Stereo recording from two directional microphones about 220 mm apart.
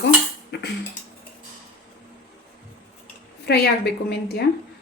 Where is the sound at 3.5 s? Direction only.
50° left (ahead or behind).